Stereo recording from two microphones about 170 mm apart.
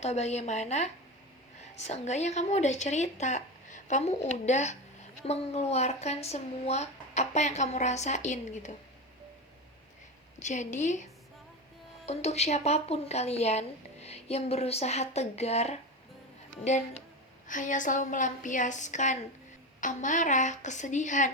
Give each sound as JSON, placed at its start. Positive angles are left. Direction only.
{"t": 0.0, "sound": "a woman's voice", "side_deg": 40}
{"t": 10.4, "sound": "a woman's voice", "side_deg": 45}
{"t": 12.0, "sound": "a woman's voice", "side_deg": 40}
{"t": 17.5, "sound": "a woman's voice", "side_deg": 50}